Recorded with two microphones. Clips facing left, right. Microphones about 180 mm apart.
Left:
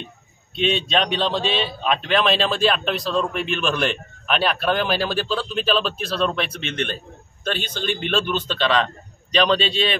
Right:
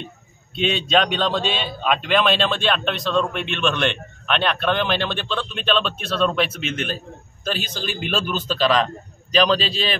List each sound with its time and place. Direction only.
0.6 s speech: centre (ahead or behind)